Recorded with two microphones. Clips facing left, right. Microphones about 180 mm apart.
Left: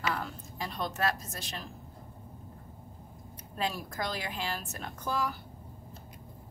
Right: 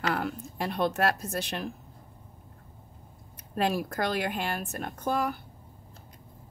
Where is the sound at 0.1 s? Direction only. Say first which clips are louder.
Right 6 dB; 65° right (ahead or behind).